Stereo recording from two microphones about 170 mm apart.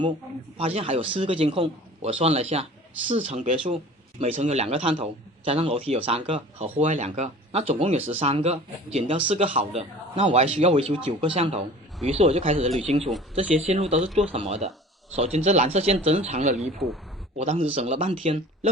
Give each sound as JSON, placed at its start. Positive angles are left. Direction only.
{"t": 0.6, "sound": "speech", "side_deg": -35}
{"t": 16.7, "sound": "speech", "side_deg": 0}
{"t": 17.3, "sound": "speech", "side_deg": -40}